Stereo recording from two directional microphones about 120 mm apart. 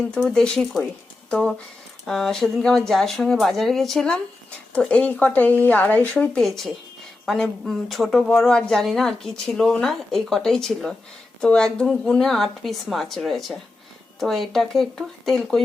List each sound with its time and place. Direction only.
0.3 s speech: 5° left (ahead or behind)
7.3 s speech: centre (ahead or behind)